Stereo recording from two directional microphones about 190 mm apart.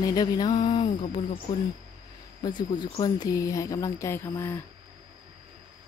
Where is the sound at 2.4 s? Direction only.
20° left (ahead or behind).